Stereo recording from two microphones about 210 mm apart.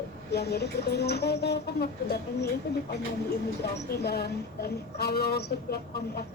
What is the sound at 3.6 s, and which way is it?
A woman's voice, 50° left (ahead or behind).